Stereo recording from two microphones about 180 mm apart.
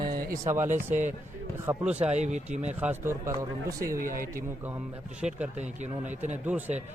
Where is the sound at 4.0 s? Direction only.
50° right (ahead or behind).